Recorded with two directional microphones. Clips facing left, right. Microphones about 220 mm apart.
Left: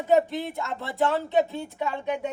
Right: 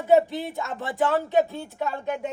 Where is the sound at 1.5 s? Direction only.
15° left (ahead or behind).